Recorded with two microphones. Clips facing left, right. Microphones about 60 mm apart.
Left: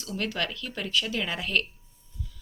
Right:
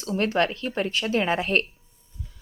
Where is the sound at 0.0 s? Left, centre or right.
Right.